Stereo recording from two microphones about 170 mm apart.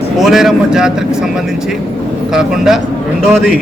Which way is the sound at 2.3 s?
5° right (ahead or behind).